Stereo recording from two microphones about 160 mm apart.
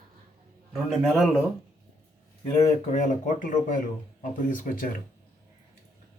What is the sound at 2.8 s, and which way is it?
A man's voice, 50° left (ahead or behind).